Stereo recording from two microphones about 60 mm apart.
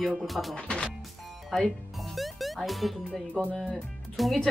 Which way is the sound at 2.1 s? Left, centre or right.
Centre.